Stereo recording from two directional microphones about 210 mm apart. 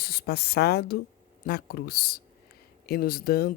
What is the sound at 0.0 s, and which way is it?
A woman's voice, 45° left (ahead or behind).